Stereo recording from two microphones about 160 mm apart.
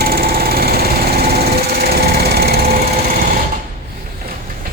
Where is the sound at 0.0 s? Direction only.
75° right (ahead or behind).